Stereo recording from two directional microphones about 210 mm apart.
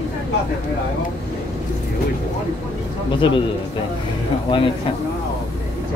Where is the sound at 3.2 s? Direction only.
25° left (ahead or behind).